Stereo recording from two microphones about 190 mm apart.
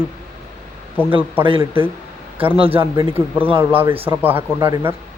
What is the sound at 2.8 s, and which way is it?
Speech, 10° right (ahead or behind).